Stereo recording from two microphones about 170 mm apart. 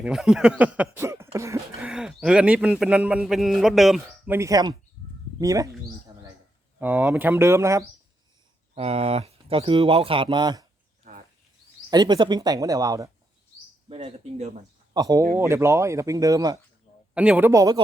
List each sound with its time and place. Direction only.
0.0 s speech: 5° right (ahead or behind)
1.8 s speech: 5° right (ahead or behind)
4.4 s speech: 20° right (ahead or behind)
6.7 s speech: 10° right (ahead or behind)
8.7 s speech: 35° right (ahead or behind)
11.9 s speech: 25° right (ahead or behind)
13.8 s speech: 35° right (ahead or behind)
14.9 s speech: 20° right (ahead or behind)
17.2 s speech: 10° right (ahead or behind)